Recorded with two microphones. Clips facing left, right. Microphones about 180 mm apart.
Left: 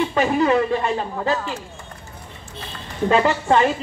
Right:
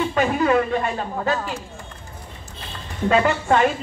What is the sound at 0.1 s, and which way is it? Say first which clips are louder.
Speech: even; 25° left (ahead or behind).